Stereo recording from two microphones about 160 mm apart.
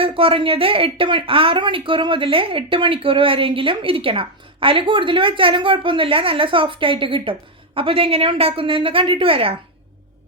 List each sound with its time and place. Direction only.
0.0 s a woman's voice: 35° right (ahead or behind)